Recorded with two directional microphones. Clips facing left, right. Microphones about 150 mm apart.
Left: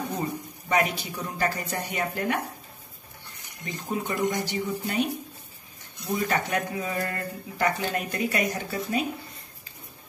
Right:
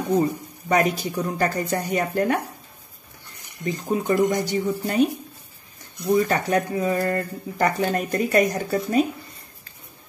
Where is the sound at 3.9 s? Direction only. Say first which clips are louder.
Right 6 dB; 35° right (ahead or behind).